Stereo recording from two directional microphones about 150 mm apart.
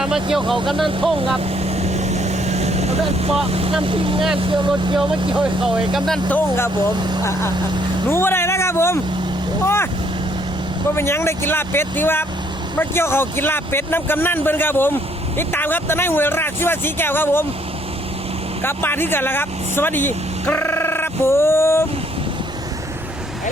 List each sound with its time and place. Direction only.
0.0 s speech: 5° right (ahead or behind)
1.7 s vehicle: 45° right (ahead or behind)
3.5 s speech: 40° right (ahead or behind)
5.4 s speech: 5° right (ahead or behind)
6.2 s speech: 10° left (ahead or behind)
8.1 s speech: 15° left (ahead or behind)
10.9 s speech: 15° left (ahead or behind)
18.6 s speech: 15° left (ahead or behind)